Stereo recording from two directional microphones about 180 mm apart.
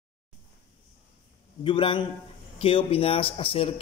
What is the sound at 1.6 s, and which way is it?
A man's voice, 30° left (ahead or behind).